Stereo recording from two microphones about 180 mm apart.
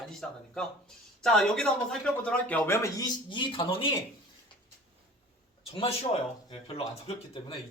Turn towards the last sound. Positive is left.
turn(degrees=30)  # may be behind; listen again after turning